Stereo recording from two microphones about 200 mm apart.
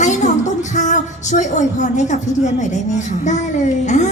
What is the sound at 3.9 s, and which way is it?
Speech, 35° left (ahead or behind).